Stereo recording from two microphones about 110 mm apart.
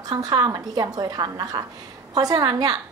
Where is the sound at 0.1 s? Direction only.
35° right (ahead or behind).